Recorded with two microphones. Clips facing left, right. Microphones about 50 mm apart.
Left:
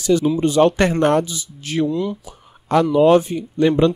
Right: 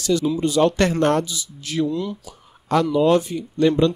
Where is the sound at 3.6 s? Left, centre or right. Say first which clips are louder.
Left 2 dB; centre.